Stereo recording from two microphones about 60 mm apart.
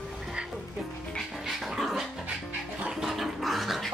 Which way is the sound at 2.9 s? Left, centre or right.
Centre.